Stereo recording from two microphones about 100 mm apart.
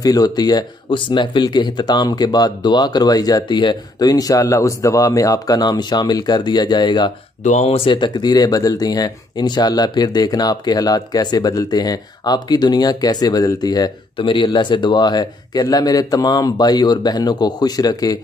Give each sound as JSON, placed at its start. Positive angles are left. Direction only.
{"t": 0.0, "sound": "speech", "side_deg": 40}
{"t": 4.1, "sound": "speech", "side_deg": 35}
{"t": 7.6, "sound": "speech", "side_deg": 70}
{"t": 7.9, "sound": "speech", "side_deg": 45}